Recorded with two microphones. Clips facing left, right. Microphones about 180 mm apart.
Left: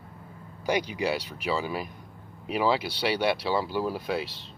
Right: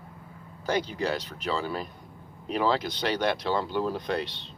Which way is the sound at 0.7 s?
10° left (ahead or behind).